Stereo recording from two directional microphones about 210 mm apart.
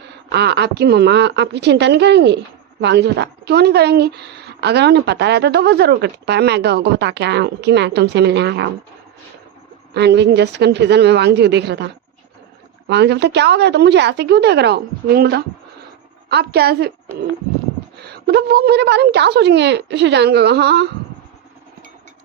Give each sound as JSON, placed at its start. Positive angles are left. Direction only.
{"t": 0.3, "sound": "speech", "side_deg": -55}
{"t": 9.9, "sound": "speech", "side_deg": -50}
{"t": 12.9, "sound": "speech", "side_deg": -55}
{"t": 18.0, "sound": "speech", "side_deg": -50}